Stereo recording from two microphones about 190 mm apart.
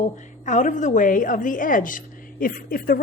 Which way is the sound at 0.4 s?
40° left (ahead or behind).